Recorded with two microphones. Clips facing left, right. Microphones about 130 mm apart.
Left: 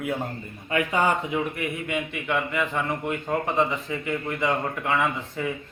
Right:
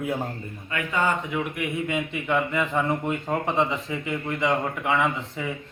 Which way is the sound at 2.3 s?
30° right (ahead or behind).